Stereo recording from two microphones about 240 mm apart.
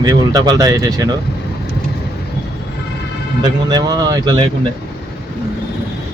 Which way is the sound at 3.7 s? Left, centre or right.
Centre.